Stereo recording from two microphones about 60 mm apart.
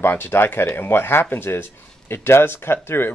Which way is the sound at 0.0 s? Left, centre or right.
Left.